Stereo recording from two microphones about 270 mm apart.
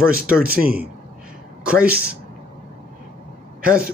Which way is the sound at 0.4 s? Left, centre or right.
Right.